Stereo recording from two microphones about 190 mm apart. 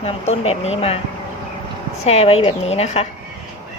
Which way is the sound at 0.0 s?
35° left (ahead or behind).